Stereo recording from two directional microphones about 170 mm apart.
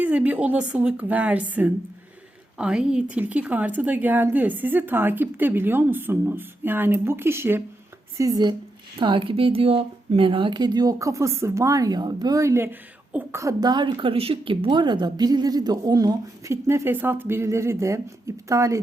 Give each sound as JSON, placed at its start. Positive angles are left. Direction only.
{"t": 0.0, "sound": "a woman's voice", "side_deg": -10}